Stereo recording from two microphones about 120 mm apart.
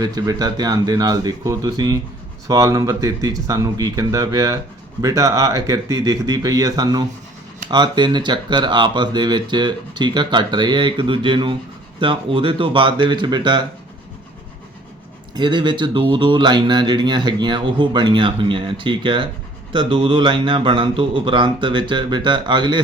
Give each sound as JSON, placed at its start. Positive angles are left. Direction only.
{"t": 0.0, "sound": "a man's voice", "side_deg": -35}
{"t": 15.4, "sound": "a man's voice", "side_deg": -40}